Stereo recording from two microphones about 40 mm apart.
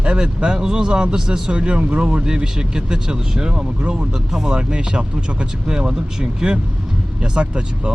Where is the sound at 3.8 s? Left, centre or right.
Right.